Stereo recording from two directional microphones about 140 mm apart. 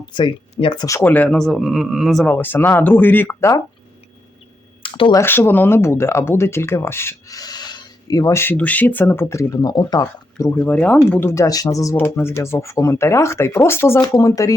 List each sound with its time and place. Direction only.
0.0 s speech: 35° left (ahead or behind)
0.9 s speech: 15° left (ahead or behind)
2.3 s speech: 15° left (ahead or behind)
4.8 s a sound: 40° left (ahead or behind)
5.1 s speech: 15° left (ahead or behind)